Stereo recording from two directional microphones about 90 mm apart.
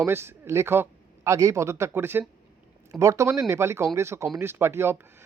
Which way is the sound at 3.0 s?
35° right (ahead or behind).